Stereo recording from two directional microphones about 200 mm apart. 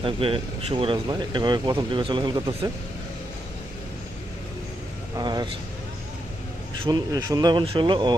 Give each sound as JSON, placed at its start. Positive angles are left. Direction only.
{"t": 0.0, "sound": "speech", "side_deg": -25}
{"t": 5.1, "sound": "speech", "side_deg": -20}
{"t": 6.8, "sound": "speech", "side_deg": -20}